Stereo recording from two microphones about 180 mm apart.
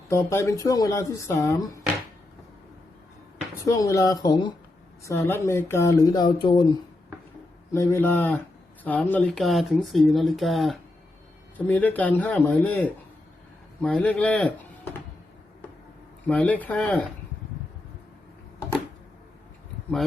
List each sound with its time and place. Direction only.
0.1 s speech: 15° left (ahead or behind)
3.7 s speech: 20° left (ahead or behind)
7.7 s speech: 15° left (ahead or behind)
16.2 s speech: 10° left (ahead or behind)